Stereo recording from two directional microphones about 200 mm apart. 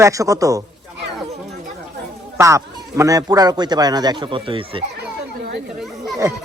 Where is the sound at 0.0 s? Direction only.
15° right (ahead or behind).